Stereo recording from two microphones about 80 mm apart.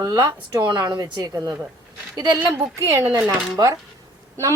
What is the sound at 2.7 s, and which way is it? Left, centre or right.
Speech, right.